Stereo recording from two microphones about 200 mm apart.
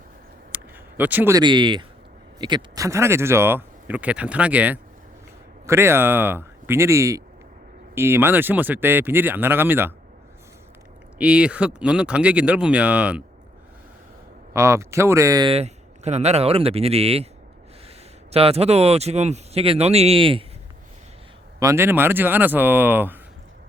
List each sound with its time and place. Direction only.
0.5 s speech: 10° right (ahead or behind)
11.2 s speech: 5° right (ahead or behind)
14.5 s speech: 15° right (ahead or behind)
15.5 s speech: 35° right (ahead or behind)
21.6 s speech: 15° right (ahead or behind)